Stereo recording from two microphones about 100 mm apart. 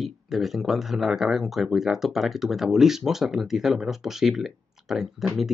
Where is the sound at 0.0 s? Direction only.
Centre (ahead or behind).